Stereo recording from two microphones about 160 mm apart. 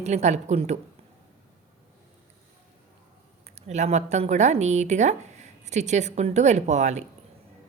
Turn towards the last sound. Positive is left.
turn(degrees=-45)  # may be behind; listen again after turning